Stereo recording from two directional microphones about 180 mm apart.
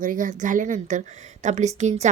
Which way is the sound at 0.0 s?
50° right (ahead or behind).